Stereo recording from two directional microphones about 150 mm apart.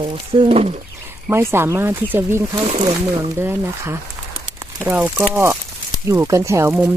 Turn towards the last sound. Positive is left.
turn(degrees=-20)  # may be behind; listen again after turning